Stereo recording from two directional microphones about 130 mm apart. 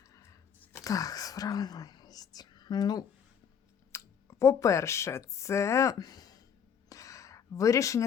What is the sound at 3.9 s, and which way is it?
Speech, 20° left (ahead or behind).